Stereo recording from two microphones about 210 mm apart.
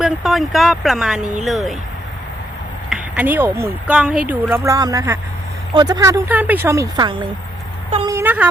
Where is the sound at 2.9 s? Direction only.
5° right (ahead or behind).